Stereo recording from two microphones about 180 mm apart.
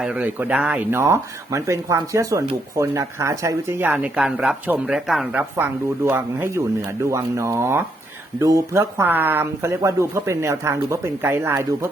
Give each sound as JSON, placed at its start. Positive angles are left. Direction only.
{"t": 0.0, "sound": "speech", "side_deg": -5}